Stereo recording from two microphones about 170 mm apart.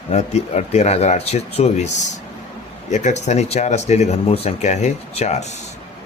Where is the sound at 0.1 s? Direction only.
40° left (ahead or behind).